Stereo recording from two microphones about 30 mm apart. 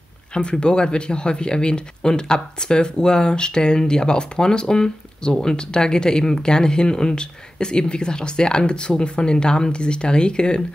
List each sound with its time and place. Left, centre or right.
0.3 s speech: left